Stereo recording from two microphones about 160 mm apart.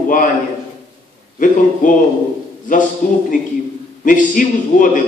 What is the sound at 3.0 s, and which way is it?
A man's voice, 55° left (ahead or behind).